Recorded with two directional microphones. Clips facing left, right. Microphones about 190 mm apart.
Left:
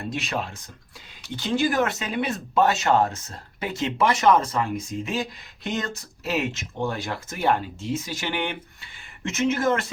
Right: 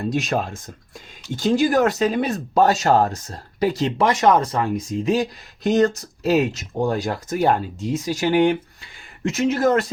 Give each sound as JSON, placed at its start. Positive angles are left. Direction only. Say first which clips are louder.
{"t": 0.1, "sound": "speech", "louder": "right 5 dB", "side_deg": -45}